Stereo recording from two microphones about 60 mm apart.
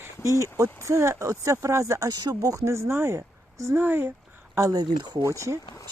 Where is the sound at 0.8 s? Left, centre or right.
Right.